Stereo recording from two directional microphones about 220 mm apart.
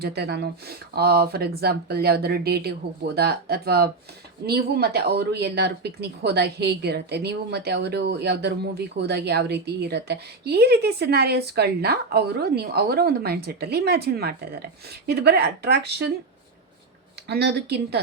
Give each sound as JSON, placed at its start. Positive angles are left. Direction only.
{"t": 0.0, "sound": "speech", "side_deg": -45}
{"t": 17.2, "sound": "speech", "side_deg": -50}